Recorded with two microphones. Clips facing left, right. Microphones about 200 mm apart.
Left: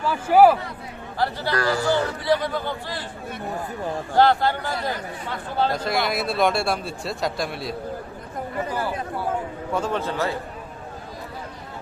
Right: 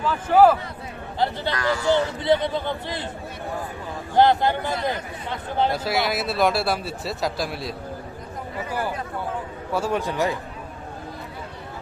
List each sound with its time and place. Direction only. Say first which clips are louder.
0.0 s a man's voice: left 1 dB; 10° left (ahead or behind)
1.2 s a man's voice: right 1 dB; 20° right (ahead or behind)
1.5 s speech: left 4 dB; 35° left (ahead or behind)
1.9 s a man's voice: right 5 dB; 20° right (ahead or behind)
4.1 s a man's voice: right 1 dB; 20° right (ahead or behind)
5.7 s a man's voice: even; 5° right (ahead or behind)
9.7 s a man's voice: right 1 dB; 10° right (ahead or behind)